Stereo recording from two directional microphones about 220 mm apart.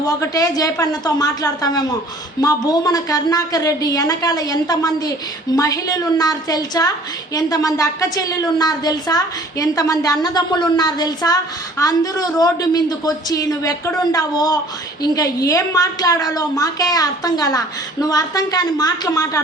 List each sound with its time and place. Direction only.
0.0 s a woman's voice: 15° left (ahead or behind)